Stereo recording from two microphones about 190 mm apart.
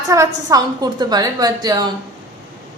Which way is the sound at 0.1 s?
15° right (ahead or behind).